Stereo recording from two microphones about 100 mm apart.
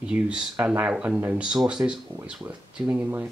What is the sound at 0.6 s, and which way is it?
Speech, 15° right (ahead or behind).